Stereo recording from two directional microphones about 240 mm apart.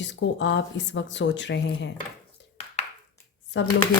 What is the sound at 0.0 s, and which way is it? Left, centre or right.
Speech, left.